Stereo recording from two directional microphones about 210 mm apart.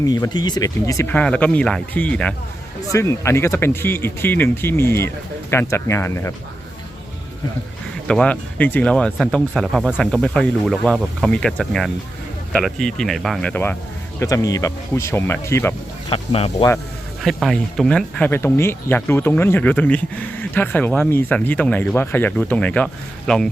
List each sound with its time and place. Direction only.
0.0 s speech: 20° left (ahead or behind)
8.0 s speech: 5° left (ahead or behind)
16.0 s speech: 25° left (ahead or behind)
17.2 s speech: centre (ahead or behind)